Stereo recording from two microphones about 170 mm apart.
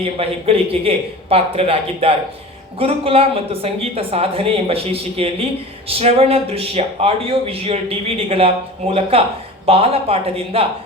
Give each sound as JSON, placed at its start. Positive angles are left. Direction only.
{"t": 0.0, "sound": "speech", "side_deg": -35}